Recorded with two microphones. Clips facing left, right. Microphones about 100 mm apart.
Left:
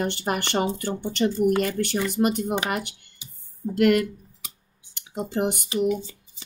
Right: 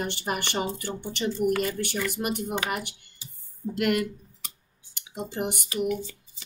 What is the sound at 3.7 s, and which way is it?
Speech, 50° left (ahead or behind).